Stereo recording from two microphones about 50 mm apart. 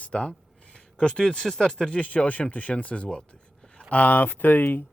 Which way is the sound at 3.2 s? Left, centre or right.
Centre.